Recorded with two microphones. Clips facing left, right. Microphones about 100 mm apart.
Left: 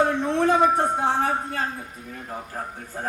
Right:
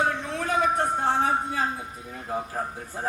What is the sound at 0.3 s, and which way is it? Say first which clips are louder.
Speech: left 9 dB; 30° left (ahead or behind).